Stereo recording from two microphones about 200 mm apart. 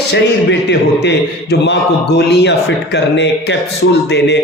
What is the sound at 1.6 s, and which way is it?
Speech, 60° left (ahead or behind).